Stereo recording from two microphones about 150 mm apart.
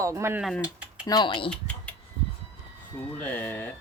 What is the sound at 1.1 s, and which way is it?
Speech, 30° left (ahead or behind).